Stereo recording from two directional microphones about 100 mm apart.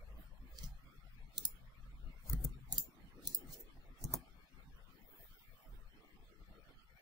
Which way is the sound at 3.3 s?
40° right (ahead or behind).